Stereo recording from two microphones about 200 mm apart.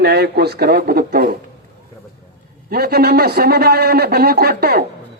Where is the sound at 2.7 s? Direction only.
50° right (ahead or behind).